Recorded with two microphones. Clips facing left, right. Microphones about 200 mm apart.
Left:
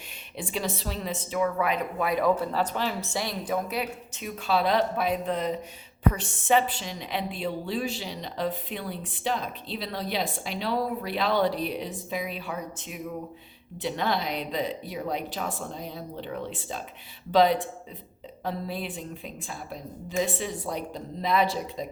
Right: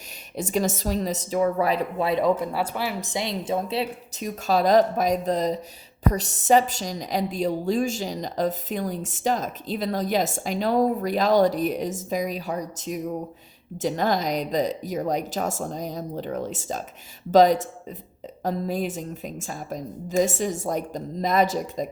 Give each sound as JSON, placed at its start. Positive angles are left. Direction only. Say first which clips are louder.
{"t": 0.3, "sound": "a woman's voice", "louder": "right 7 dB", "side_deg": -45}